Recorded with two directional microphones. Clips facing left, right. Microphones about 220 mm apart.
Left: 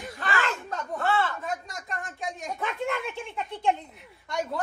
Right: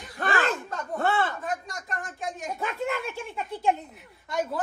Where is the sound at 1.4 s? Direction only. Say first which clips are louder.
Right 1 dB; centre (ahead or behind).